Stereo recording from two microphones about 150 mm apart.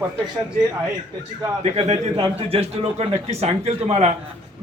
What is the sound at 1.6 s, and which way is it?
A man's voice, 45° right (ahead or behind).